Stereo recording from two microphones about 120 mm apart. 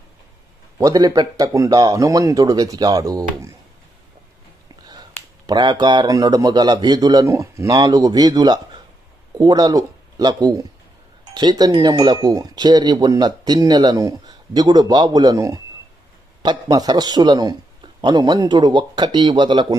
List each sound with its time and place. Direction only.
0.8 s speech: 30° right (ahead or behind)
5.5 s speech: 35° right (ahead or behind)